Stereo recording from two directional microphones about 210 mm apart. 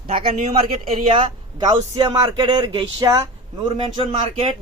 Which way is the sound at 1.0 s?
25° right (ahead or behind).